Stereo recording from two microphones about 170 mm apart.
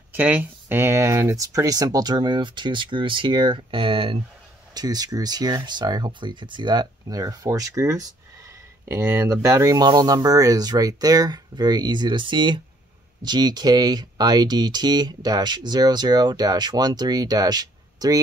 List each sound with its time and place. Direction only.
0.1 s speech: 10° right (ahead or behind)